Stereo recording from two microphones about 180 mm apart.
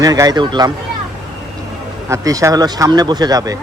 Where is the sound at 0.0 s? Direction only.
20° right (ahead or behind).